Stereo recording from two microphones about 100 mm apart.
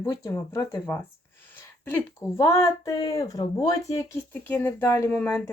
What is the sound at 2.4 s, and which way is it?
Speech, 30° left (ahead or behind).